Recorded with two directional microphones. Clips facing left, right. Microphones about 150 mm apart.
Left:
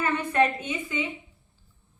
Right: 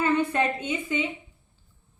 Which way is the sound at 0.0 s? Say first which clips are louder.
Even; 25° right (ahead or behind).